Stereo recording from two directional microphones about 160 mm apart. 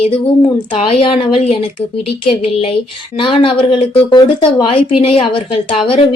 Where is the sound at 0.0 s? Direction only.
35° left (ahead or behind).